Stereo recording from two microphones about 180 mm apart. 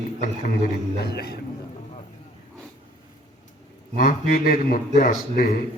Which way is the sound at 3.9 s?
55° left (ahead or behind).